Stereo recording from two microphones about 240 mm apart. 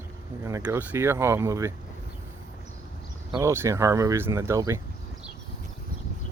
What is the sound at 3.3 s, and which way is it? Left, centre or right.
Speech, centre.